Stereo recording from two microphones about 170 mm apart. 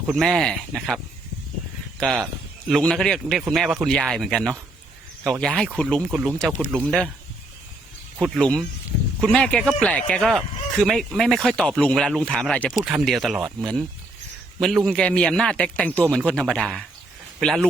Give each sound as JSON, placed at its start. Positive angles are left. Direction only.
{"t": 0.1, "sound": "speech", "side_deg": 0}
{"t": 2.0, "sound": "speech", "side_deg": 5}
{"t": 8.2, "sound": "speech", "side_deg": 5}